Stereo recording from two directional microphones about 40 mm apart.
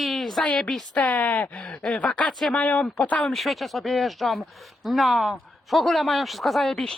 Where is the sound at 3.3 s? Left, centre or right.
Centre.